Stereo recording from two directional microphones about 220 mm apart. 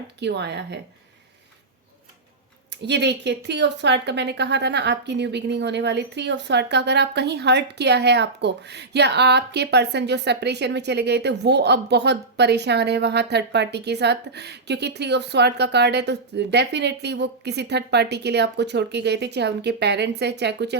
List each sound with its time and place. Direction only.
0.2 s a woman's voice: 50° right (ahead or behind)
2.8 s a woman's voice: 50° right (ahead or behind)